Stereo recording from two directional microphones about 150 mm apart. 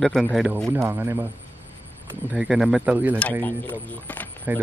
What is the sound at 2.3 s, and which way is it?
Speech, 5° right (ahead or behind).